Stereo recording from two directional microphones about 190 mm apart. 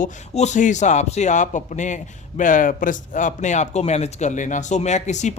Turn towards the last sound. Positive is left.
turn(degrees=40)  # may be behind; listen again after turning